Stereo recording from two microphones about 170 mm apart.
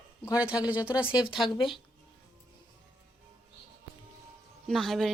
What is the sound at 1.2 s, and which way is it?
Speech, 30° left (ahead or behind).